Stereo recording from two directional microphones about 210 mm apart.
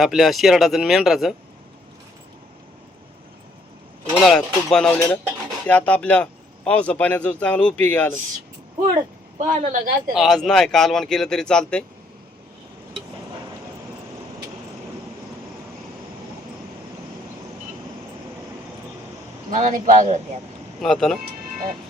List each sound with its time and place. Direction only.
0.0 s speech: centre (ahead or behind)
4.3 s a man's voice: 5° left (ahead or behind)
9.4 s speech: 35° right (ahead or behind)
10.1 s speech: centre (ahead or behind)
19.5 s speech: 35° right (ahead or behind)
20.8 s speech: centre (ahead or behind)